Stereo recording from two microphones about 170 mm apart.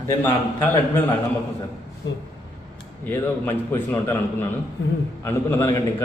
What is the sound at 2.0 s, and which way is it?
Speech, 90° left.